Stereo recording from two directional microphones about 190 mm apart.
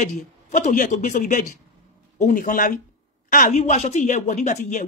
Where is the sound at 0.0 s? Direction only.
40° left (ahead or behind).